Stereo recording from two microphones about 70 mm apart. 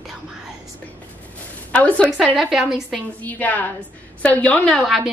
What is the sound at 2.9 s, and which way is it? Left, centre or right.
A woman's voice, left.